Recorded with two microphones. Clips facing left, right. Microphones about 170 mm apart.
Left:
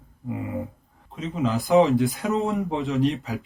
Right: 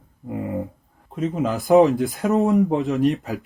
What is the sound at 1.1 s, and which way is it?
Speech, 50° right (ahead or behind).